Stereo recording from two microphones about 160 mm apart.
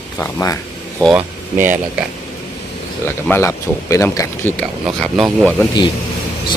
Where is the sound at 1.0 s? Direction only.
10° right (ahead or behind).